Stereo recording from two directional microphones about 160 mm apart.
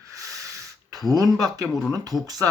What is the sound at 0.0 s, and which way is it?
Snort, 20° right (ahead or behind).